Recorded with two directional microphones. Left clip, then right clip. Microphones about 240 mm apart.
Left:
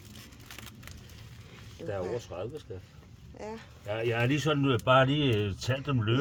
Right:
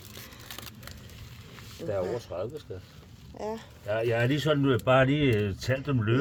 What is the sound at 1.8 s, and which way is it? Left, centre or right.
Speech, centre.